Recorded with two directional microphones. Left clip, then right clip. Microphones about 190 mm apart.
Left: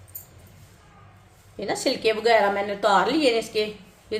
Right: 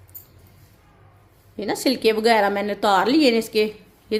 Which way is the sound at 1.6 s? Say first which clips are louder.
Right 3 dB; 55° right (ahead or behind).